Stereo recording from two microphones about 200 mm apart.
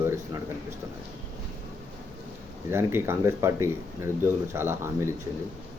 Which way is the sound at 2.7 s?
10° right (ahead or behind).